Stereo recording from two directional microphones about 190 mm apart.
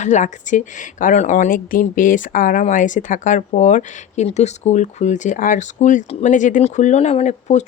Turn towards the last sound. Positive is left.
turn(degrees=35)  # may be behind; listen again after turning